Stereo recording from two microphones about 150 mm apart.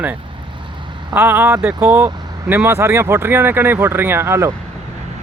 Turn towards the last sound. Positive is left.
turn(degrees=-15)  # may be behind; listen again after turning